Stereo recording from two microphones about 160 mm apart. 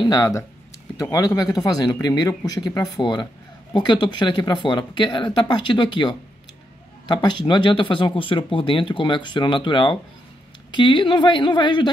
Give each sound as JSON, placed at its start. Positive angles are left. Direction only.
{"t": 0.0, "sound": "speech", "side_deg": 25}